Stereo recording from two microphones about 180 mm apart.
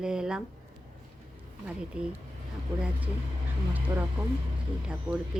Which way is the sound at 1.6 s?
5° right (ahead or behind).